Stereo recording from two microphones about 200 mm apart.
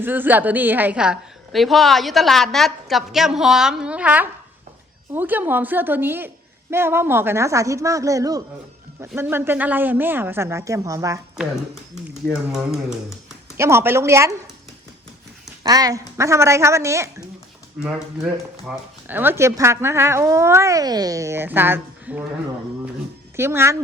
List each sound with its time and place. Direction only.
0.0 s a woman's voice: 10° right (ahead or behind)
12.3 s a woman's voice: centre (ahead or behind)
13.6 s speech: 15° right (ahead or behind)
15.6 s speech: 20° right (ahead or behind)
18.6 s speech: 10° right (ahead or behind)
23.4 s speech: 10° right (ahead or behind)